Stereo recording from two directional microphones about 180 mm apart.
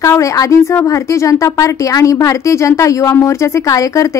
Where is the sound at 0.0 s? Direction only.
15° left (ahead or behind).